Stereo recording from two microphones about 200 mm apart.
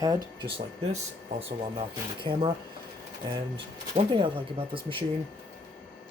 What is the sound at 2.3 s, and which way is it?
Speech, 25° right (ahead or behind).